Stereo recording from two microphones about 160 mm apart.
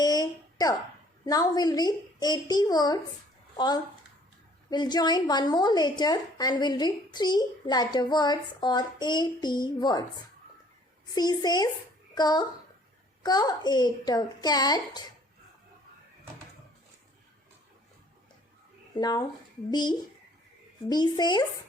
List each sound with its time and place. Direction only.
0.0 s a sound: 25° left (ahead or behind)
1.2 s a woman's voice: 25° left (ahead or behind)
4.7 s a woman's voice: 25° left (ahead or behind)
11.1 s a woman's voice: 25° left (ahead or behind)
18.9 s a woman's voice: 25° left (ahead or behind)